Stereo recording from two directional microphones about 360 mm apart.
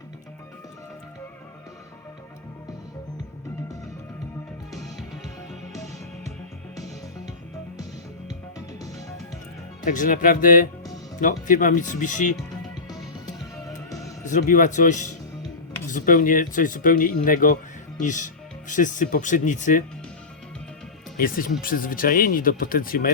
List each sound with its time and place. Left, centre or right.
4.7 s music: centre
8.3 s music: centre
9.8 s speech: left
13.4 s music: centre
14.3 s speech: left
21.2 s speech: left